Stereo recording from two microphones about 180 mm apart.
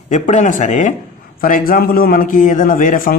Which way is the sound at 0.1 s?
40° left (ahead or behind).